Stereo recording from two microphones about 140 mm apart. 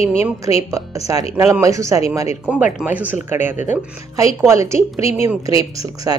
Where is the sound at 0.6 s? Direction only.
20° right (ahead or behind).